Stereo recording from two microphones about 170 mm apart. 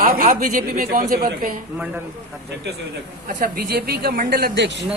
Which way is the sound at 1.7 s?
10° right (ahead or behind).